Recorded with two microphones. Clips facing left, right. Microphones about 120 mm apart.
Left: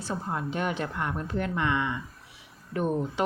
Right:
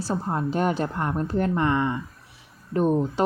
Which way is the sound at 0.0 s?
35° right (ahead or behind).